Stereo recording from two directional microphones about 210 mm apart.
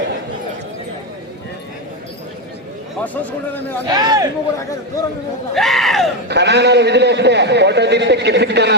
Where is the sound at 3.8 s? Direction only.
20° right (ahead or behind).